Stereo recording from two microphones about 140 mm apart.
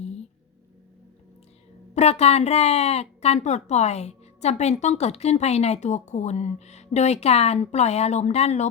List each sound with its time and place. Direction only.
2.0 s a woman's voice: 50° left (ahead or behind)